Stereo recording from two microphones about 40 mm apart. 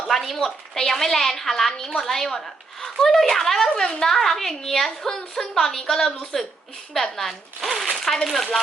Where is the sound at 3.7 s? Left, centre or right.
Centre.